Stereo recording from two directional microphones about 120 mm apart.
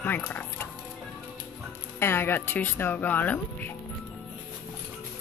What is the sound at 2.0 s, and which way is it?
A woman's voice, 20° left (ahead or behind).